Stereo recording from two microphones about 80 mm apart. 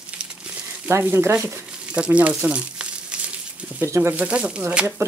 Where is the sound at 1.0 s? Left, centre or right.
Right.